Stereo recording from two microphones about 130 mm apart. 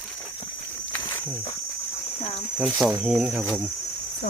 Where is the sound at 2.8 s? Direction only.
5° right (ahead or behind).